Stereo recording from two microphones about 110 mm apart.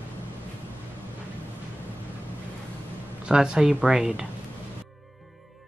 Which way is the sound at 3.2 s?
10° right (ahead or behind).